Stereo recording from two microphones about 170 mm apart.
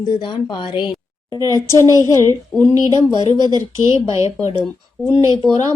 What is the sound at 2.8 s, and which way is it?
Speech, 25° right (ahead or behind).